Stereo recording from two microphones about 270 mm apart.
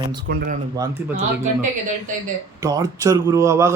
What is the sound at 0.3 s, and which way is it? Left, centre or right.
Speech, right.